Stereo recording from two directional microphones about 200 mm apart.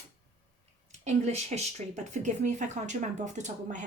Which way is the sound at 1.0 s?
35° right (ahead or behind).